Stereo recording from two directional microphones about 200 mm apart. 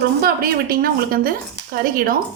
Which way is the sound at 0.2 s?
50° right (ahead or behind).